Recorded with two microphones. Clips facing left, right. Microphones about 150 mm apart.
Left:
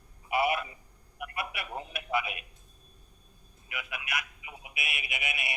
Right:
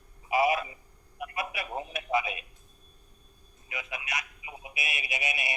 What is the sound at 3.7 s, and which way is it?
A man's voice, 25° right (ahead or behind).